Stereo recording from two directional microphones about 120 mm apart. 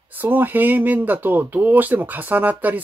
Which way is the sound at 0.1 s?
15° right (ahead or behind).